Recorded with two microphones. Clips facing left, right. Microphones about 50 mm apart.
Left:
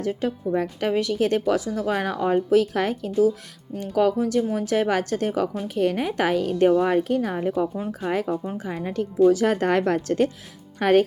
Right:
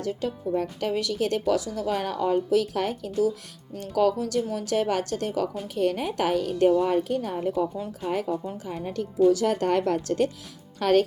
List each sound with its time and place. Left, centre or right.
0.1 s speech: left